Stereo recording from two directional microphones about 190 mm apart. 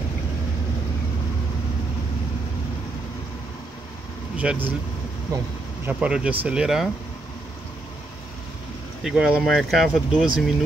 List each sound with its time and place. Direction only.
4.4 s speech: 10° right (ahead or behind)
5.3 s speech: 20° right (ahead or behind)
5.9 s speech: 5° right (ahead or behind)
9.0 s speech: 5° right (ahead or behind)